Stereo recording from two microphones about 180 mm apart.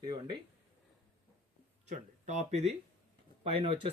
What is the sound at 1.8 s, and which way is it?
Speech, 40° right (ahead or behind).